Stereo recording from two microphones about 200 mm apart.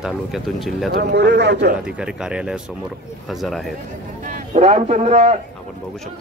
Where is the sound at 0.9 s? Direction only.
50° right (ahead or behind).